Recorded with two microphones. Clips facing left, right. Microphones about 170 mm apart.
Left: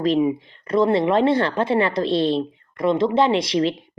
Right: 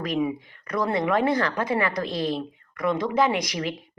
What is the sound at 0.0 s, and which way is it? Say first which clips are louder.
Speech: left 7 dB; 25° left (ahead or behind).